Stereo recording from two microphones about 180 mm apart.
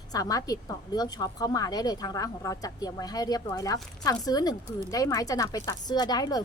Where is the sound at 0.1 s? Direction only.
20° left (ahead or behind).